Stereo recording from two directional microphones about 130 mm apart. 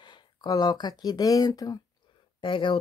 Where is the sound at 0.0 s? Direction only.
35° left (ahead or behind).